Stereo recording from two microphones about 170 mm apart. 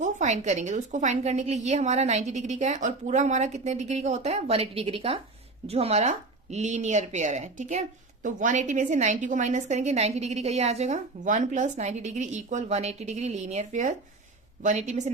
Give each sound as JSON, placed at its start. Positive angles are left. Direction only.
{"t": 0.0, "sound": "a woman's voice", "side_deg": -45}